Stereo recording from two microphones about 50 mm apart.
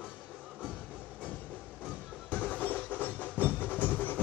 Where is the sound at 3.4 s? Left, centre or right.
Left.